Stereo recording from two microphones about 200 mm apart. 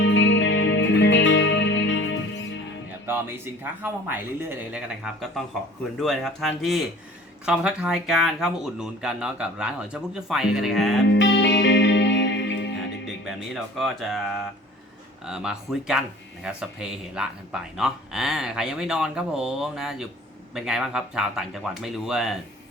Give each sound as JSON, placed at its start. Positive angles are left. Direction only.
{"t": 0.0, "sound": "music", "side_deg": 65}
{"t": 3.1, "sound": "speech", "side_deg": -10}
{"t": 11.1, "sound": "music", "side_deg": 65}
{"t": 13.2, "sound": "speech", "side_deg": 0}